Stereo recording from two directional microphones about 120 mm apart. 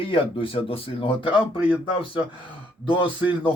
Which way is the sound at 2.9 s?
45° left (ahead or behind).